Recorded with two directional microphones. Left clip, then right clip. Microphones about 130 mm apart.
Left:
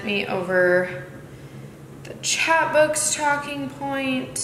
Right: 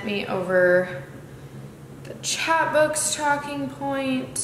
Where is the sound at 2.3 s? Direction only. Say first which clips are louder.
Left 2 dB; centre (ahead or behind).